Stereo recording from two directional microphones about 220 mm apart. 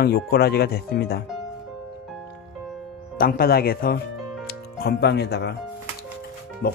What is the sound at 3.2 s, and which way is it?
Speech, 45° left (ahead or behind).